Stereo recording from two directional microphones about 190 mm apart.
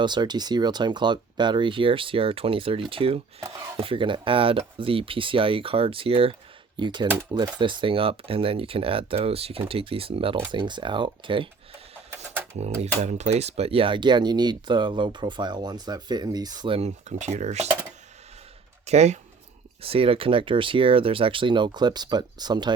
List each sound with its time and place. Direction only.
0.0 s speech: 25° right (ahead or behind)
3.4 s speech: 20° right (ahead or behind)
13.0 s speech: 35° right (ahead or behind)
18.9 s speech: 35° right (ahead or behind)